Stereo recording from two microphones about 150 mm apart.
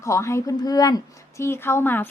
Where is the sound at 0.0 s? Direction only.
20° left (ahead or behind).